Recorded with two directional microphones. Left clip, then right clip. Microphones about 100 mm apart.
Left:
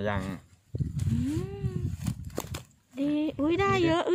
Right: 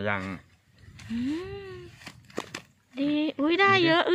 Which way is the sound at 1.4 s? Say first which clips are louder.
Right 1 dB; 10° left (ahead or behind).